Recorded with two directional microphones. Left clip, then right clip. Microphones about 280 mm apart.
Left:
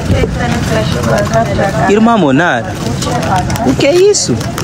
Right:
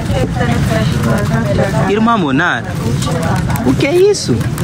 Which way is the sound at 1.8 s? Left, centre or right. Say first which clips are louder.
Left 6 dB; centre.